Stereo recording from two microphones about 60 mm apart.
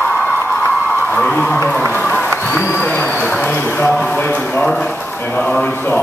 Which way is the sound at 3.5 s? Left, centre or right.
Left.